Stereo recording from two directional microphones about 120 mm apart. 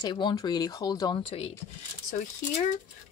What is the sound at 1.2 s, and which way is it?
Speech, 45° left (ahead or behind).